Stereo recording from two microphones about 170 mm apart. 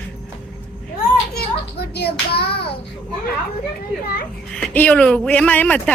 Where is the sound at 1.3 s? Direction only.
70° left (ahead or behind).